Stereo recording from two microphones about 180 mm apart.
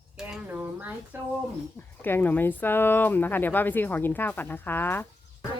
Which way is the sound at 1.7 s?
10° left (ahead or behind).